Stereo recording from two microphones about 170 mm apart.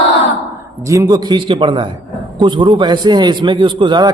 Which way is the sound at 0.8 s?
20° right (ahead or behind).